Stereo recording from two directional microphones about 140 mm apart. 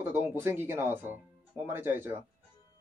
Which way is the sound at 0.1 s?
15° right (ahead or behind).